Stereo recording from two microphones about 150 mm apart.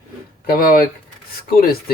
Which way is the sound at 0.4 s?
80° left.